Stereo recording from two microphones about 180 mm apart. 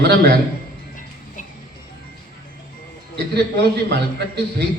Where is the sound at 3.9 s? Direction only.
70° right (ahead or behind).